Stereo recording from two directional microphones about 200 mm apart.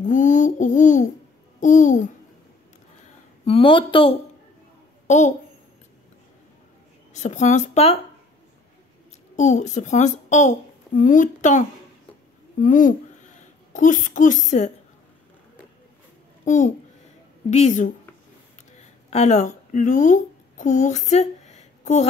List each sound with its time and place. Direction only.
0.0 s a woman's voice: 40° left (ahead or behind)
3.4 s speech: 25° left (ahead or behind)
5.0 s a woman's voice: 35° left (ahead or behind)
7.2 s a woman's voice: 35° left (ahead or behind)
9.4 s a woman's voice: 35° left (ahead or behind)
16.4 s a child's voice: 40° left (ahead or behind)
19.0 s a woman's voice: 35° left (ahead or behind)